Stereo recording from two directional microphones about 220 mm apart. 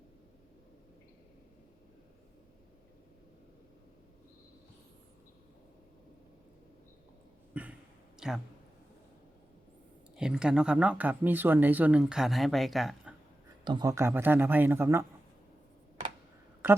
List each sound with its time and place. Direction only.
7.6 s a sound: 5° right (ahead or behind)
8.2 s speech: centre (ahead or behind)
10.2 s speech: 5° right (ahead or behind)
13.7 s a man's voice: 20° right (ahead or behind)